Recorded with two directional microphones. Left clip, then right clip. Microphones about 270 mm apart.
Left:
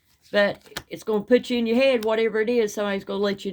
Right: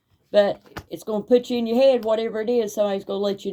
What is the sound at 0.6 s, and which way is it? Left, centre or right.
Speech, centre.